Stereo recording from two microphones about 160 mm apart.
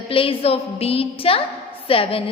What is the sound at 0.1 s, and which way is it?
A woman's voice, 35° left (ahead or behind).